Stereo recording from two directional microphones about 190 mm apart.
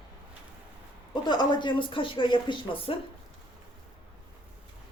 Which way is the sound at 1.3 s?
25° left (ahead or behind).